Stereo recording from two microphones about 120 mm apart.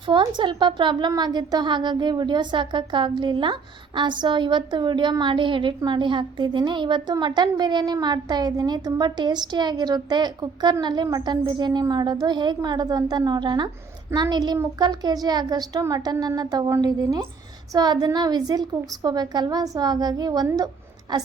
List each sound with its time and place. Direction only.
0.0 s a woman's voice: 40° right (ahead or behind)